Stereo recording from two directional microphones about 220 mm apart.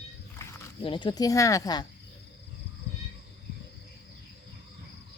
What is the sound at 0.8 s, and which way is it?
Speech, 25° left (ahead or behind).